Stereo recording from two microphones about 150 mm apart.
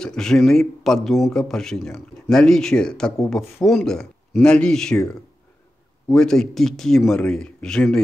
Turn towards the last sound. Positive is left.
turn(degrees=5)  # may be behind; listen again after turning